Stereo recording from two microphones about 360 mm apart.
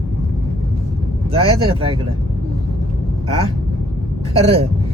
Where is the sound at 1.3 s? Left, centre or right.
Centre.